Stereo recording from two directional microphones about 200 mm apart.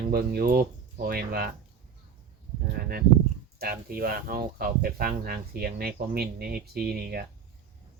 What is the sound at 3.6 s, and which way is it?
Speech, 50° right (ahead or behind).